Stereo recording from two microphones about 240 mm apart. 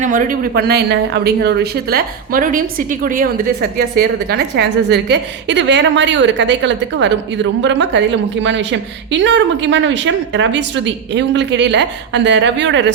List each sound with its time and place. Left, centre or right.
0.0 s a woman's voice: right